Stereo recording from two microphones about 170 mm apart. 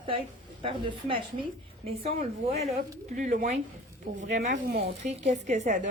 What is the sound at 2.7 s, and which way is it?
Speech, 50° right (ahead or behind).